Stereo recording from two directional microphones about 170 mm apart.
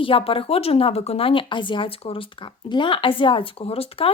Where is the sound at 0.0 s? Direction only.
30° left (ahead or behind).